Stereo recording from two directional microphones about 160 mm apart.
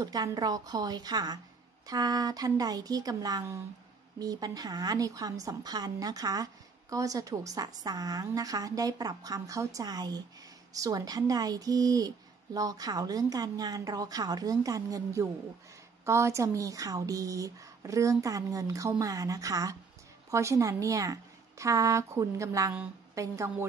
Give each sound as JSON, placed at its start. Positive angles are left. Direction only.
{"t": 0.0, "sound": "a woman's voice", "side_deg": -25}